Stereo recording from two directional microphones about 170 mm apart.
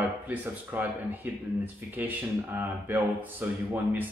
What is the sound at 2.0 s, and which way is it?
Speech, 10° right (ahead or behind).